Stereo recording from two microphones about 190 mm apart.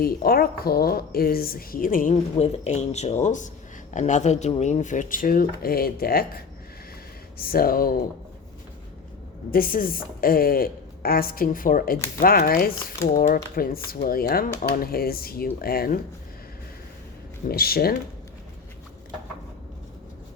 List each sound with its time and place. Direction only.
0.0 s speech: 55° left (ahead or behind)
9.5 s speech: 50° left (ahead or behind)
11.9 s speech: 15° left (ahead or behind)
12.2 s speech: 50° left (ahead or behind)
17.5 s speech: 55° left (ahead or behind)